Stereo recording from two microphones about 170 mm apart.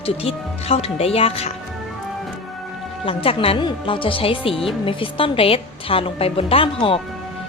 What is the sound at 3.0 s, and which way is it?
A woman's voice, 30° left (ahead or behind).